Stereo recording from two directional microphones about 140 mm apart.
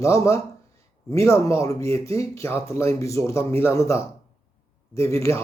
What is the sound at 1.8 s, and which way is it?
Speech, 45° right (ahead or behind).